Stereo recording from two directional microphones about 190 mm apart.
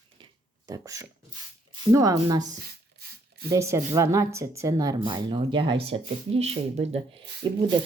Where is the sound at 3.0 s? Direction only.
55° right (ahead or behind).